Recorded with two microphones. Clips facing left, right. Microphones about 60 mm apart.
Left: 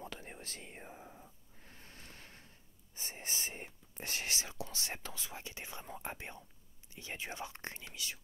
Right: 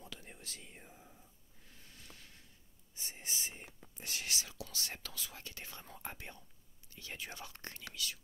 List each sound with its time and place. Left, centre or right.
0.0 s whispering: left
1.6 s a sound: left
3.9 s speech: left